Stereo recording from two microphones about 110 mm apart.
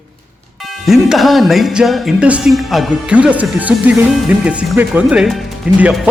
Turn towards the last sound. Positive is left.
turn(degrees=-15)  # may be behind; listen again after turning